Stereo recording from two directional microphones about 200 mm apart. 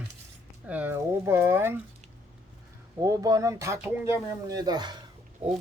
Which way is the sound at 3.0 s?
15° right (ahead or behind).